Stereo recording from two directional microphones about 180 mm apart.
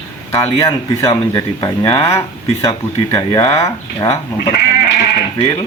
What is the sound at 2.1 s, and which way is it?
Speech, 15° left (ahead or behind).